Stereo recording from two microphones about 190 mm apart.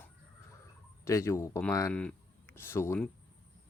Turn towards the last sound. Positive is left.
turn(degrees=10)  # may be behind; listen again after turning